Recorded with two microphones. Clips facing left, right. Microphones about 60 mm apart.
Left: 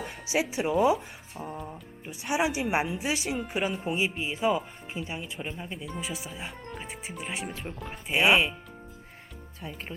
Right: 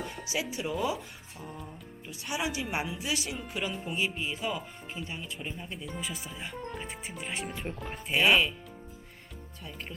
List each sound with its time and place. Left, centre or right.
0.3 s speech: left
3.2 s speech: centre
3.5 s speech: left; by 7.9 s centre
8.1 s speech: centre